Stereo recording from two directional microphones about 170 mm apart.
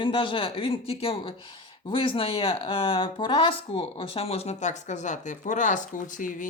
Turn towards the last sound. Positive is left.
turn(degrees=50)  # may be behind; listen again after turning